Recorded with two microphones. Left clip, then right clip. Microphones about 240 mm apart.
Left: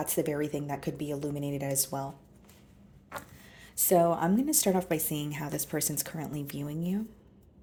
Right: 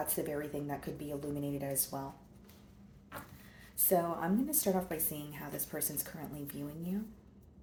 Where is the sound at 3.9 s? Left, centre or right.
Left.